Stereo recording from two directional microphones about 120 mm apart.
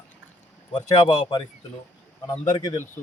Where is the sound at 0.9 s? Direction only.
35° left (ahead or behind).